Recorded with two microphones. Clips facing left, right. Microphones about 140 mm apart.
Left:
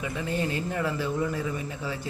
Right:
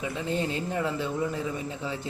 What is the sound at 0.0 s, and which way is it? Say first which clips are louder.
A man's voice: even; 25° right (ahead or behind).